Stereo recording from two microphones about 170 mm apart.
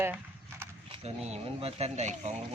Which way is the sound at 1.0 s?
40° right (ahead or behind).